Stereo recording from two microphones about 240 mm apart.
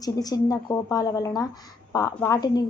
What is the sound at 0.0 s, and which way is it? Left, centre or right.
Speech, centre.